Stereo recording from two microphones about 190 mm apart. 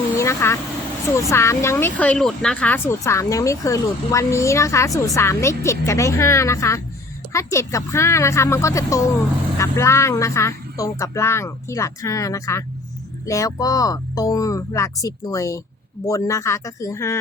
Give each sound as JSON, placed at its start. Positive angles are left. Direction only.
{"t": 0.2, "sound": "vehicle", "side_deg": 15}
{"t": 1.1, "sound": "speech", "side_deg": 15}